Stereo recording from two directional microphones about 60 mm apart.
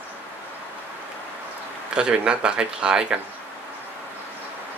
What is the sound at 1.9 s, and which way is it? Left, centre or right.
Speech, centre.